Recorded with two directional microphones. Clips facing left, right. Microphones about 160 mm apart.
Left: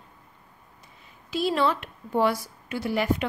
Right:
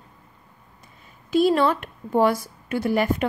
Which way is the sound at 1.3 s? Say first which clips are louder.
Right 6 dB; 50° right (ahead or behind).